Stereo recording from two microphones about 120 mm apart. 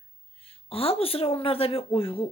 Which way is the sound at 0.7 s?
50° left (ahead or behind).